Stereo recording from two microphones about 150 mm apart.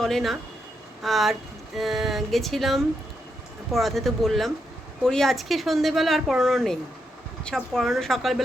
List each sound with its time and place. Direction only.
0.0 s speech: centre (ahead or behind)